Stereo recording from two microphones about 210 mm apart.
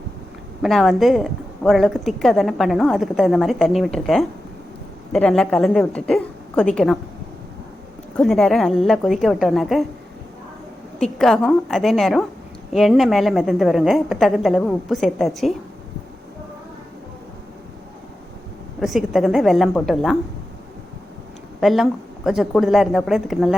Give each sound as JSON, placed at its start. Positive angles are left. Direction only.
{"t": 0.6, "sound": "a woman's voice", "side_deg": 0}
{"t": 8.1, "sound": "a woman's voice", "side_deg": 0}
{"t": 11.0, "sound": "a woman's voice", "side_deg": 0}
{"t": 18.8, "sound": "a woman's voice", "side_deg": 0}
{"t": 21.6, "sound": "a woman's voice", "side_deg": 0}